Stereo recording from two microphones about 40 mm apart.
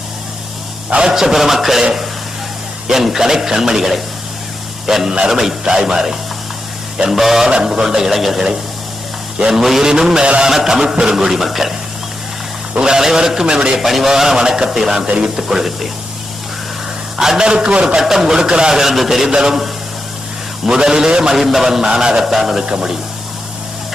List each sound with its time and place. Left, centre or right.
0.9 s a man's voice: right
1.1 s speech: centre
7.4 s a man's voice: right; by 8.4 s centre
9.5 s speech: centre
12.8 s a man's voice: centre
13.8 s speech: centre
17.2 s speech: centre
17.4 s a man's voice: right
17.8 s speech: centre
18.8 s a man's voice: centre
22.6 s a man's voice: centre